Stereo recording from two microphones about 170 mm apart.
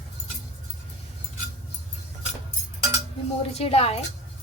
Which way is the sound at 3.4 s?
35° left (ahead or behind).